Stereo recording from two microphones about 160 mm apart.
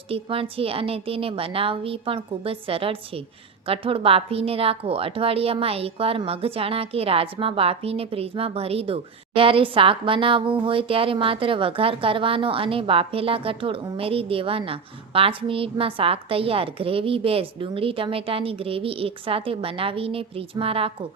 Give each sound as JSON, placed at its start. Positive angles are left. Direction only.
{"t": 0.1, "sound": "a woman's voice", "side_deg": -35}